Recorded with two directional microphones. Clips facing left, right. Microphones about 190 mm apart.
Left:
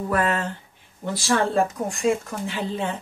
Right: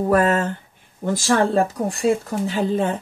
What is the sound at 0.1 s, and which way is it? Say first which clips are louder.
Speech: right 5 dB; 40° right (ahead or behind).